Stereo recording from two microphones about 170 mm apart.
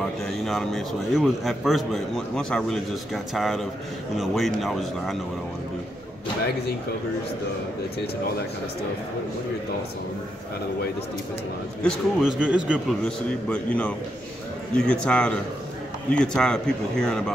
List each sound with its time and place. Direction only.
0.2 s a man's voice: centre (ahead or behind)
11.8 s a man's voice: 5° right (ahead or behind)
13.5 s a man's voice: 5° left (ahead or behind)